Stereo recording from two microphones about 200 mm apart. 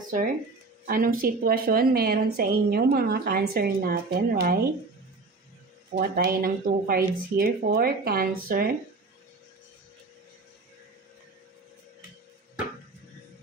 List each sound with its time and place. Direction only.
0.9 s a woman's voice: 45° right (ahead or behind)
5.9 s a woman's voice: 50° right (ahead or behind)